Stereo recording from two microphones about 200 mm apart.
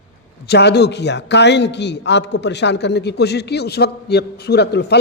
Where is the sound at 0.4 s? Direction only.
55° left (ahead or behind).